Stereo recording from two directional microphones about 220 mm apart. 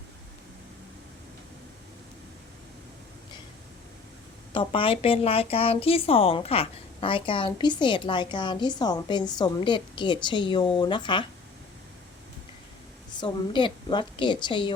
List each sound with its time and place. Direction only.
4.5 s a woman's voice: 25° left (ahead or behind)
13.1 s a woman's voice: 20° left (ahead or behind)